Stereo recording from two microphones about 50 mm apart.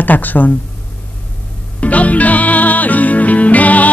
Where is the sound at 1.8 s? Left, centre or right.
Left.